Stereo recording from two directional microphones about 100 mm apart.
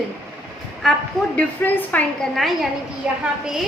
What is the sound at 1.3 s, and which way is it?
Speech, 15° left (ahead or behind).